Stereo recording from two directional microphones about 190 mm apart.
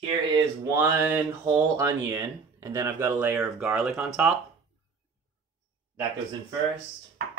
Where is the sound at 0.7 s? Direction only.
10° right (ahead or behind).